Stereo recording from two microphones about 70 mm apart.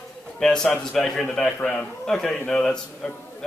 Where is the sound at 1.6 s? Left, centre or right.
Left.